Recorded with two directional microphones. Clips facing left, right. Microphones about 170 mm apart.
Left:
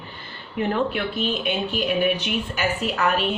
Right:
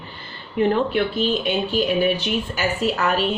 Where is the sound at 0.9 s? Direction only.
35° right (ahead or behind).